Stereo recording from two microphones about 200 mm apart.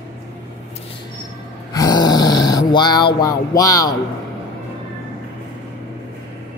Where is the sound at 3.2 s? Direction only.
15° left (ahead or behind).